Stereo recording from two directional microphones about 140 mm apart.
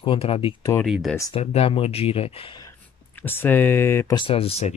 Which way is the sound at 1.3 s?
45° left (ahead or behind).